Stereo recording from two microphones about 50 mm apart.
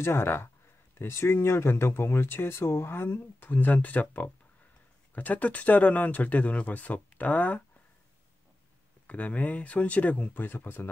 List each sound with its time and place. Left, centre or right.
0.0 s speech: left
9.0 s speech: left